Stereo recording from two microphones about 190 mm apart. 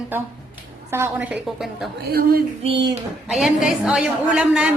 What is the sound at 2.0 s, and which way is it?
Speech, 55° right (ahead or behind).